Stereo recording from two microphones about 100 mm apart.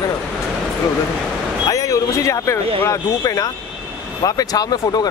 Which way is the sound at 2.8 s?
35° left (ahead or behind).